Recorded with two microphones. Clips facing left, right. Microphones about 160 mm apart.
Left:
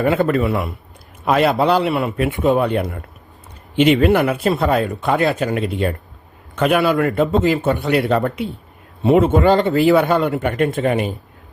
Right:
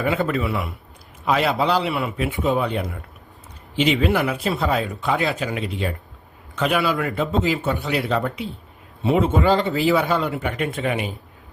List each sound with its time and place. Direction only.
0.0 s speech: 50° left (ahead or behind)